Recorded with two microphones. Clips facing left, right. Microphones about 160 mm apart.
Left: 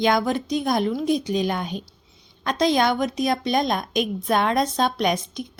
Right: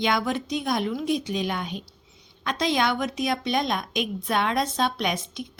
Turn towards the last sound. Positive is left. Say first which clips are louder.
# left 5 dB
turn(degrees=40)  # may be behind; listen again after turning